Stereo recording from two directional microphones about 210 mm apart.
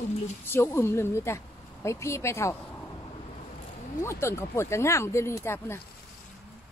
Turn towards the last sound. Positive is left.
turn(degrees=10)  # may be behind; listen again after turning